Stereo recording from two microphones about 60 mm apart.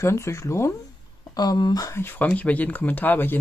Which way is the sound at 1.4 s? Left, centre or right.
Left.